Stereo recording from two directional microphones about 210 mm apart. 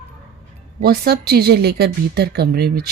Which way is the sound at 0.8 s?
50° right (ahead or behind).